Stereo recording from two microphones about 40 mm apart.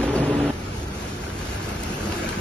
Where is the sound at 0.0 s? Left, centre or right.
Left.